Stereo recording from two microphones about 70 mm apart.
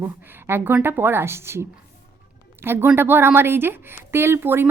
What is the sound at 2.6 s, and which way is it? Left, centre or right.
Speech, right.